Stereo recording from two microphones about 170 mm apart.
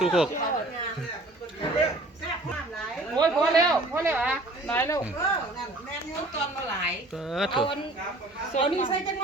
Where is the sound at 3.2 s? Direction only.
25° right (ahead or behind).